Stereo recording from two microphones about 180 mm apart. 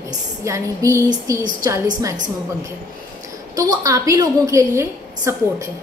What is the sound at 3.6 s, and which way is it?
A woman's voice, 20° right (ahead or behind).